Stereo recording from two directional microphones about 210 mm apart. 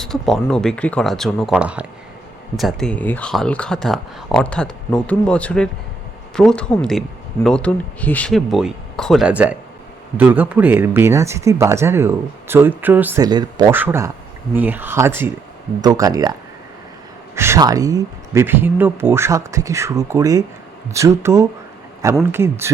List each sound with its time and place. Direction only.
0.0 s speech: centre (ahead or behind); by 16.3 s 15° right (ahead or behind)
17.3 s speech: 10° right (ahead or behind)